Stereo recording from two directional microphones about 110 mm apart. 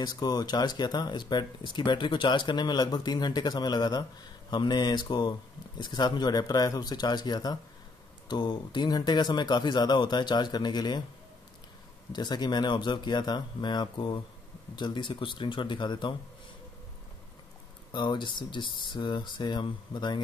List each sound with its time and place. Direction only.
0.0 s speech: 40° left (ahead or behind)
12.1 s speech: 40° left (ahead or behind)
17.9 s speech: 45° left (ahead or behind)